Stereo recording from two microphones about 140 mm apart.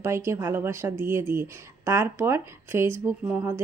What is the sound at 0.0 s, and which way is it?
A woman's voice, 20° right (ahead or behind).